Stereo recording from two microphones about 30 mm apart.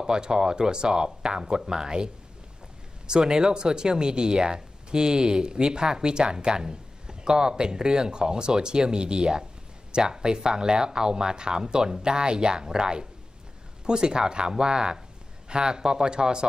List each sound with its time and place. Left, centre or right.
0.0 s speech: right
3.3 s speech: right